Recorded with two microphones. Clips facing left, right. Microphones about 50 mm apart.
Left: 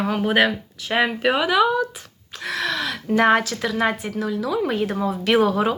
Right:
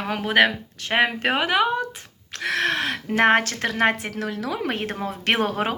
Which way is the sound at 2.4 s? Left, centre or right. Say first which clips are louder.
Right 2 dB; right.